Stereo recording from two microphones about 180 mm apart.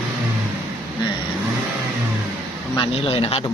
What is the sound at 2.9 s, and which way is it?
Speech, 35° left (ahead or behind).